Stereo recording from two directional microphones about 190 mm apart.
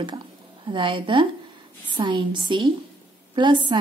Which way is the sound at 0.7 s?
25° right (ahead or behind).